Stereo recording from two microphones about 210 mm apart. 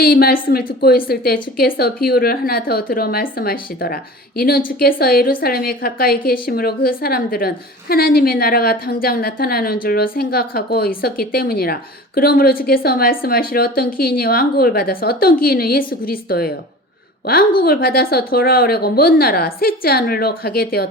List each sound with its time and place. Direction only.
0.0 s a woman's voice: 45° left (ahead or behind)
17.6 s a woman's voice: 45° left (ahead or behind)